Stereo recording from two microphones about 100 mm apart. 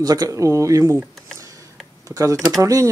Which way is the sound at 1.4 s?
35° right (ahead or behind).